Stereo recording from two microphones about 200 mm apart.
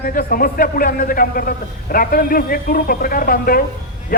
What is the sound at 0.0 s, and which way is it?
A man's voice, 45° left (ahead or behind).